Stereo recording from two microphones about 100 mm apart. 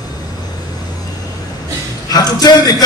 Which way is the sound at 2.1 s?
40° left (ahead or behind).